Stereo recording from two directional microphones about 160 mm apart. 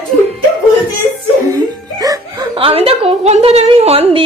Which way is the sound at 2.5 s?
35° right (ahead or behind).